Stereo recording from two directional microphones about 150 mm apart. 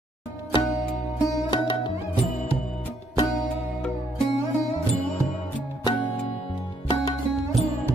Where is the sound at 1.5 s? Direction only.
30° left (ahead or behind).